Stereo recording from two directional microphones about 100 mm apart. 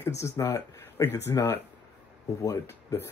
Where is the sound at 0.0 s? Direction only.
30° left (ahead or behind).